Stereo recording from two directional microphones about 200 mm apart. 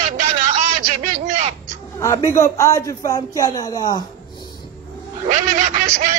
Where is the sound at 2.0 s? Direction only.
15° left (ahead or behind).